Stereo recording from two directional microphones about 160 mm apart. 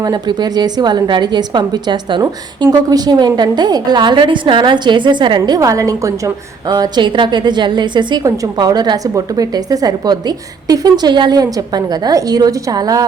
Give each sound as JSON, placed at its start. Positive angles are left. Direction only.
{"t": 0.0, "sound": "a woman's voice", "side_deg": -25}